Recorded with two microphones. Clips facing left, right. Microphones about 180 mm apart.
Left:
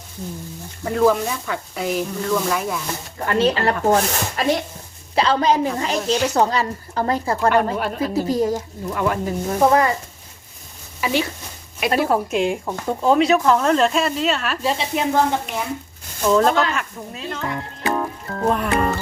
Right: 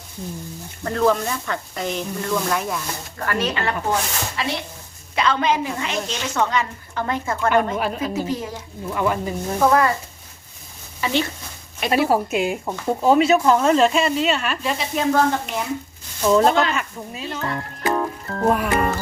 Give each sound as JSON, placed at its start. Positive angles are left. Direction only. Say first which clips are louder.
{"t": 0.9, "sound": "speech", "louder": "left 2 dB", "side_deg": 10}
{"t": 3.2, "sound": "speech", "louder": "left 5 dB", "side_deg": 25}
{"t": 5.1, "sound": "speech", "louder": "left 3 dB", "side_deg": 35}
{"t": 7.8, "sound": "speech", "louder": "left 1 dB", "side_deg": 0}
{"t": 8.1, "sound": "speech", "louder": "left 6 dB", "side_deg": 35}
{"t": 8.9, "sound": "speech", "louder": "left 1 dB", "side_deg": 0}
{"t": 9.6, "sound": "a sound", "louder": "left 1 dB", "side_deg": 20}
{"t": 11.0, "sound": "speech", "louder": "left 1 dB", "side_deg": 5}
{"t": 11.9, "sound": "speech", "louder": "even", "side_deg": -5}
{"t": 14.6, "sound": "a sound", "louder": "left 1 dB", "side_deg": 30}
{"t": 16.2, "sound": "speech", "louder": "even", "side_deg": -5}
{"t": 17.9, "sound": "music", "louder": "right 1 dB", "side_deg": 0}